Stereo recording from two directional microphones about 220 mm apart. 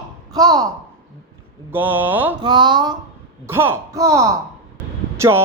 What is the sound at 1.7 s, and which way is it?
Speech, 10° right (ahead or behind).